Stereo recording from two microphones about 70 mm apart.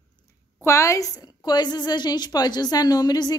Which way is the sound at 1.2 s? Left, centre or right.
Left.